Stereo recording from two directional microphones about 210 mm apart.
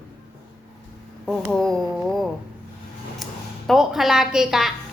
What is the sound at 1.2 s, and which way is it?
A woman's voice, 5° left (ahead or behind).